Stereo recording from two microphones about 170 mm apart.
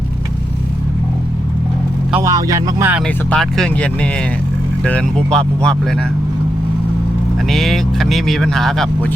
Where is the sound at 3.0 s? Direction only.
5° left (ahead or behind).